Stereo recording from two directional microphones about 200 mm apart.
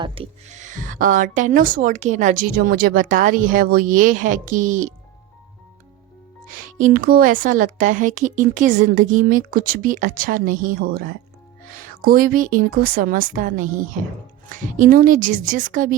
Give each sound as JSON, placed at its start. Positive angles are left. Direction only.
{"t": 0.0, "sound": "speech", "side_deg": -25}
{"t": 6.5, "sound": "speech", "side_deg": -40}